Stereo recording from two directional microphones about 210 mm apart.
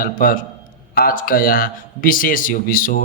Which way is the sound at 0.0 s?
45° left (ahead or behind).